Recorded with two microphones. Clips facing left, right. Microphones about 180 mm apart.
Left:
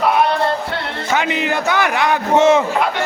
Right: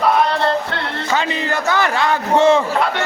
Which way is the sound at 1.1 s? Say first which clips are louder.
Left 2 dB; 15° left (ahead or behind).